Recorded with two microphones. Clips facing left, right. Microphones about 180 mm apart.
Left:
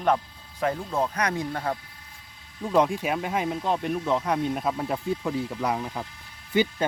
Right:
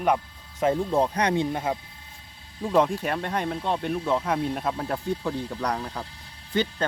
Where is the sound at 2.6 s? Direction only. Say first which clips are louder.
Even; centre (ahead or behind).